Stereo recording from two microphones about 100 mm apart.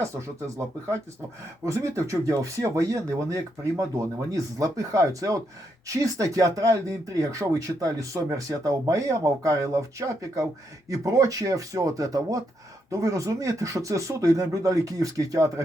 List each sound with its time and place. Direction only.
0.0 s speech: 30° right (ahead or behind)